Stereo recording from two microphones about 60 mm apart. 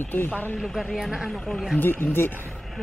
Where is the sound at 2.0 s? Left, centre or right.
Left.